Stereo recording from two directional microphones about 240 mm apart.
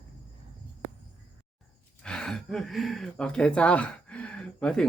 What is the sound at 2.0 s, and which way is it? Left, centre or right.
Speech, centre.